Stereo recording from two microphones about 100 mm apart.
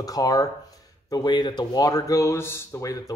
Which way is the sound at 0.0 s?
40° left (ahead or behind).